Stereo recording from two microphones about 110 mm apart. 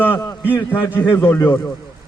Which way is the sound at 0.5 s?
20° left (ahead or behind).